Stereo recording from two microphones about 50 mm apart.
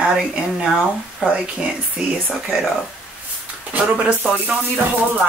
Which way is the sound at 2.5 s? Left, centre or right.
Centre.